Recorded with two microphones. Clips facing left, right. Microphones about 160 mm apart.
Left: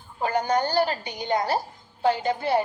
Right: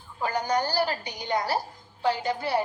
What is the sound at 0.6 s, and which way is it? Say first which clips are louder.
A woman's voice: left 3 dB; 20° left (ahead or behind).